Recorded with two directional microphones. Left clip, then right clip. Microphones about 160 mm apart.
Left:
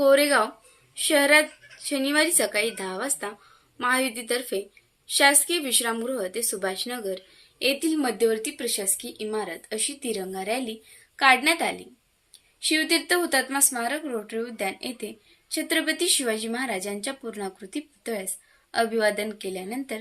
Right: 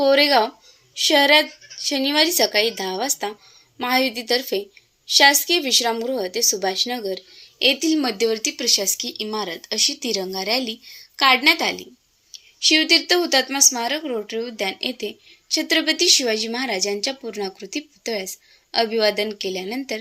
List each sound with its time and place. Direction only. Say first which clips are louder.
0.0 s speech: right 3 dB; 20° right (ahead or behind)